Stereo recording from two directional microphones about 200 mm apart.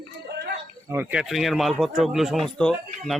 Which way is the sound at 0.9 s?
10° right (ahead or behind).